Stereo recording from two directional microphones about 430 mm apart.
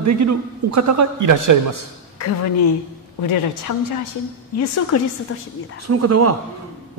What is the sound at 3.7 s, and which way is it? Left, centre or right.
Speech, left.